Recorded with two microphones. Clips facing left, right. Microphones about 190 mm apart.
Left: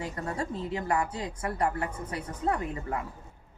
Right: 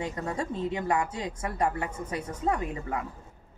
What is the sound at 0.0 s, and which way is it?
Speech, 20° right (ahead or behind).